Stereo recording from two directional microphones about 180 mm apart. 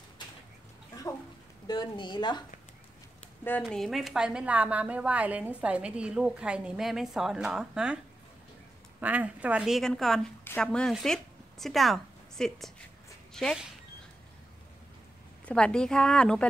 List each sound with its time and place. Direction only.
1.7 s a woman's voice: 25° left (ahead or behind)
3.6 s a woman's voice: centre (ahead or behind)
9.0 s a woman's voice: 10° right (ahead or behind)
15.4 s a woman's voice: 5° left (ahead or behind)